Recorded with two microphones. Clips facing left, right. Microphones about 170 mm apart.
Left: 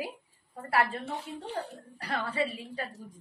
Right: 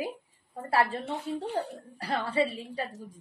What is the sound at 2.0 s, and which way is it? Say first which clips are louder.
Speech: right 4 dB; 30° right (ahead or behind).